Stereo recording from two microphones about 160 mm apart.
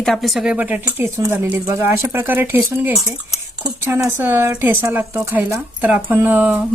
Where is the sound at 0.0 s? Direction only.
Centre (ahead or behind).